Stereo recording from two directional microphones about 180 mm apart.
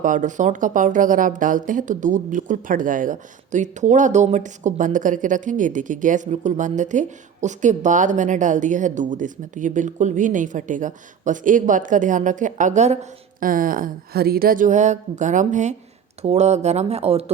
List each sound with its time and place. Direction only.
0.0 s speech: 45° right (ahead or behind)